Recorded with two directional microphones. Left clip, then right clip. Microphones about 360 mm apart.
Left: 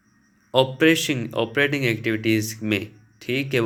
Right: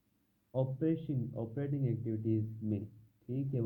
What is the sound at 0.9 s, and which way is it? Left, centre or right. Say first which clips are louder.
Speech: left 18 dB; centre.